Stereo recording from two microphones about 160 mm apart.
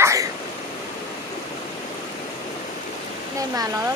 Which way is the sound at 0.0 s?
20° right (ahead or behind).